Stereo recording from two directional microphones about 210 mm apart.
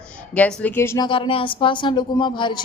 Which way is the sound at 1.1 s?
25° left (ahead or behind).